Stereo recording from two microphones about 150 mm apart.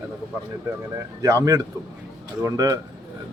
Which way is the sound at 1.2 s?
25° right (ahead or behind).